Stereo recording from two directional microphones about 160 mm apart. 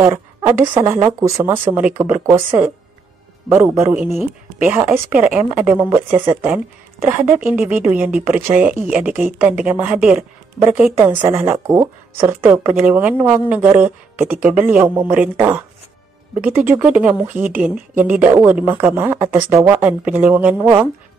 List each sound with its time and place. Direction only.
0.0 s speech: 15° right (ahead or behind)
7.4 s speech: 10° right (ahead or behind)